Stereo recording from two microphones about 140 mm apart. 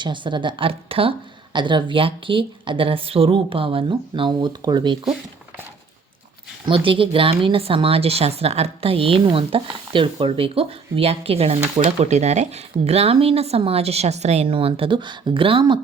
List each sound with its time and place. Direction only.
0.0 s a woman's voice: 35° right (ahead or behind)
6.7 s speech: 40° right (ahead or behind)
14.4 s a woman's voice: 40° right (ahead or behind)